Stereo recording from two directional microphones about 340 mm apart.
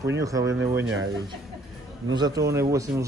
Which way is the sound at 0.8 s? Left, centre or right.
Right.